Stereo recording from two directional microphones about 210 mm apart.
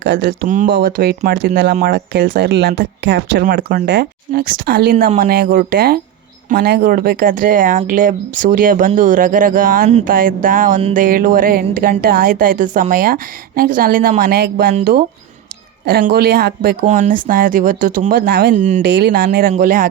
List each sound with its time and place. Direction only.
0.0 s speech: 55° right (ahead or behind)
0.4 s speech: 40° right (ahead or behind)
16.0 s speech: 50° right (ahead or behind)
18.9 s speech: 50° right (ahead or behind)